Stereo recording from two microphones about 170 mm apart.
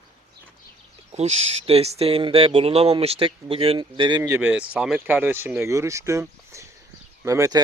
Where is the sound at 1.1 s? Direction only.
35° right (ahead or behind).